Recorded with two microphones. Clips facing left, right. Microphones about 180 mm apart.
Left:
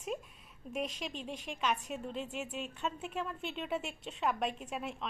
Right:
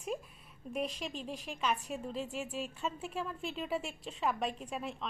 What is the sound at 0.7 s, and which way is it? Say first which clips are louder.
A woman's voice: right 1 dB; centre (ahead or behind).